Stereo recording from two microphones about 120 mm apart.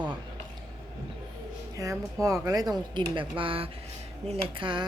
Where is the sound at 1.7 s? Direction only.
30° right (ahead or behind).